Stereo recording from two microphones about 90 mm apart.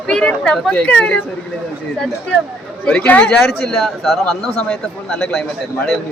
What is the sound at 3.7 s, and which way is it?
Speech, centre (ahead or behind).